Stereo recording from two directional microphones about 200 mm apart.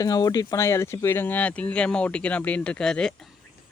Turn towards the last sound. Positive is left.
turn(degrees=5)  # may be behind; listen again after turning